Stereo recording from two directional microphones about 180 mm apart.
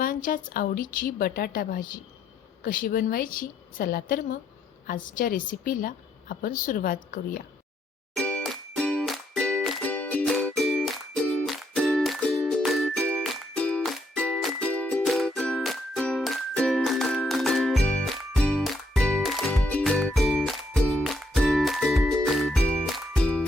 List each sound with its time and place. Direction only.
0.0 s a woman's voice: 50° left (ahead or behind)
8.2 s music: 5° left (ahead or behind)